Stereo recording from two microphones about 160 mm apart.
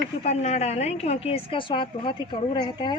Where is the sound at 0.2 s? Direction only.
45° left (ahead or behind).